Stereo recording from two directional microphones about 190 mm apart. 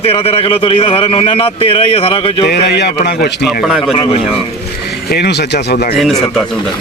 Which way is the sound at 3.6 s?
Centre (ahead or behind).